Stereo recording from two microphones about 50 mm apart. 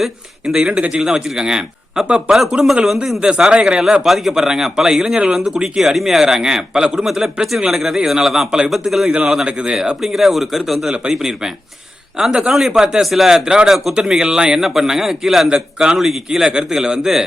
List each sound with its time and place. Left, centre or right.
0.0 s a man's voice: centre
2.8 s a man's voice: centre
3.2 s a man's voice: centre
4.0 s a man's voice: centre
5.5 s a man's voice: centre